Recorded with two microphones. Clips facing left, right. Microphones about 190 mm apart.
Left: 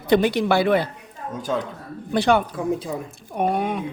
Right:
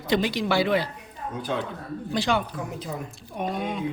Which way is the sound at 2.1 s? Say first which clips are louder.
Left 7 dB; 60° left (ahead or behind).